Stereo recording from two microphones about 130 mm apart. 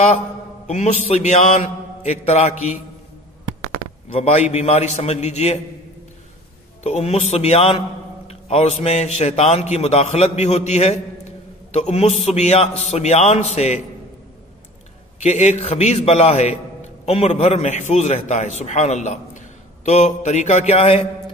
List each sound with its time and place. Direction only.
0.7 s mantra: 60° left (ahead or behind)
4.1 s a man's voice: 50° left (ahead or behind)
4.5 s mantra: 55° left (ahead or behind)
6.8 s a man's voice: 55° left (ahead or behind)
11.7 s mantra: 55° left (ahead or behind)
15.2 s mantra: 65° left (ahead or behind)
18.6 s a man's voice: 65° left (ahead or behind)